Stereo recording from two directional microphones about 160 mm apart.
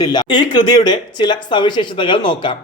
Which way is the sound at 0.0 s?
25° left (ahead or behind).